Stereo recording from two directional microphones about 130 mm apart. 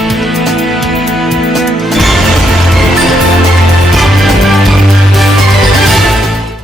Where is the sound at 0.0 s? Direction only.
Centre (ahead or behind).